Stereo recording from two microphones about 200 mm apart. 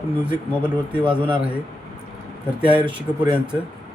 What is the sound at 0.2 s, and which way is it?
Speech, 5° right (ahead or behind).